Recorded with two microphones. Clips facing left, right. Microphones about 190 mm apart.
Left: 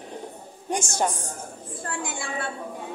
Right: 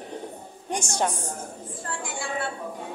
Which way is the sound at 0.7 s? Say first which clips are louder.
Left 1 dB; 5° left (ahead or behind).